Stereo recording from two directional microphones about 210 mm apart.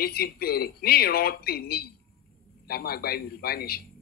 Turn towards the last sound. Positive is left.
turn(degrees=45)  # may be behind; listen again after turning